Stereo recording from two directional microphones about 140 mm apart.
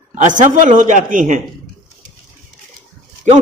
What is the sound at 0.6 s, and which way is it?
Speech, 65° right (ahead or behind).